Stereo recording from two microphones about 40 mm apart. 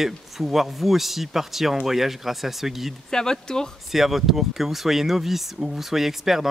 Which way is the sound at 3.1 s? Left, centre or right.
Centre.